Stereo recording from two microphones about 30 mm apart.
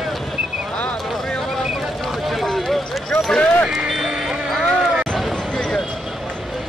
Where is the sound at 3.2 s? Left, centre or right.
Centre.